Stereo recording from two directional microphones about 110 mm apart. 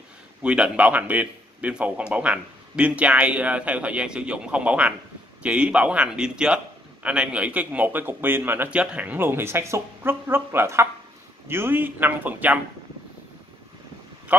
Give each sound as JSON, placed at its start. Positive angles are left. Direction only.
{"t": 0.4, "sound": "a man's voice", "side_deg": -10}